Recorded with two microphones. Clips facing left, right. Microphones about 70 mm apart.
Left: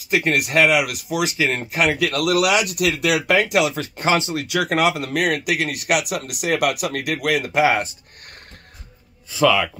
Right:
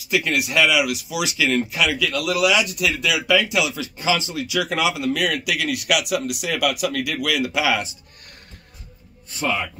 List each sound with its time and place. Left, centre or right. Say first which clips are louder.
0.1 s speech: left 2 dB; left
9.4 s speech: left 7 dB; left